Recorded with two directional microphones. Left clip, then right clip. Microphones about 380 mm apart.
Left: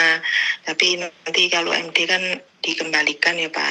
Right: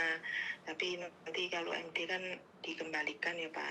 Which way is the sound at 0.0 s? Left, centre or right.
Left.